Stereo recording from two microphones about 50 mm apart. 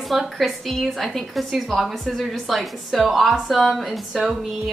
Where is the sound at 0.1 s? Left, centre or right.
Centre.